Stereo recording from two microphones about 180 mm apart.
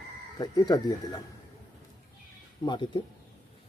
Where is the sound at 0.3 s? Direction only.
20° left (ahead or behind).